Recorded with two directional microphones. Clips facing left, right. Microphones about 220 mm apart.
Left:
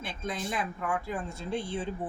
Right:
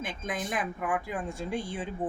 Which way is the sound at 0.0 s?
15° right (ahead or behind).